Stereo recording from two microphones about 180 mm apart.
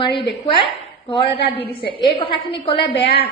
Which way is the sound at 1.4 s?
30° left (ahead or behind).